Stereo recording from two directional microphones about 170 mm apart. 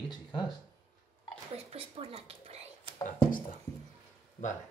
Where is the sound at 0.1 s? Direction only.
25° left (ahead or behind).